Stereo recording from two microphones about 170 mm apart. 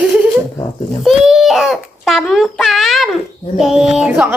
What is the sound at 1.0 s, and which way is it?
A child's voice, centre (ahead or behind).